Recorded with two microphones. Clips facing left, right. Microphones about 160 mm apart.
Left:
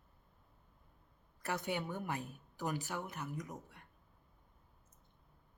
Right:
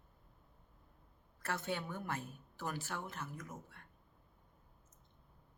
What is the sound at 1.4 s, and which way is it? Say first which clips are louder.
Speech: left 2 dB; 15° left (ahead or behind).